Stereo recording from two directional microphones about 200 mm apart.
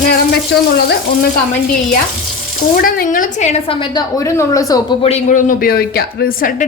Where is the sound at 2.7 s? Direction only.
45° left (ahead or behind); by 4.8 s 15° left (ahead or behind).